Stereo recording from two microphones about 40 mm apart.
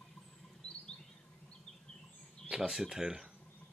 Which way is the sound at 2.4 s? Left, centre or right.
Centre.